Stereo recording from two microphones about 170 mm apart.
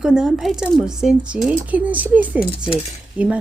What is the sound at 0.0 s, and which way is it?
Speech, 5° right (ahead or behind).